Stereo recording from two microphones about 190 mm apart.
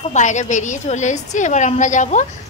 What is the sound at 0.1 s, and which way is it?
A woman's voice, 40° left (ahead or behind).